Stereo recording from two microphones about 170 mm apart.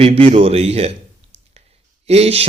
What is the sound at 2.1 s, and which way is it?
Speech, 35° right (ahead or behind).